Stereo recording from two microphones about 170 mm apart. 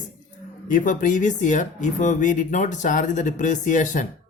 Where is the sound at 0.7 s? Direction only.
50° left (ahead or behind).